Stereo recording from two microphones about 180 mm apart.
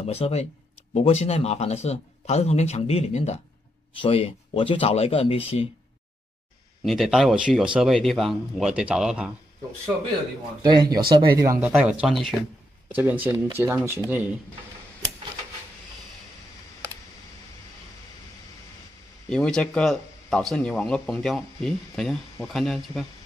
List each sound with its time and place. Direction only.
0.0 s a man's voice: 35° left (ahead or behind)
6.8 s speech: centre (ahead or behind)
10.6 s speech: 25° right (ahead or behind)
19.2 s speech: 5° left (ahead or behind)